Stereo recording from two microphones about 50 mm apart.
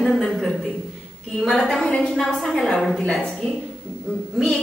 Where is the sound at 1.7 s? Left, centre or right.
Centre.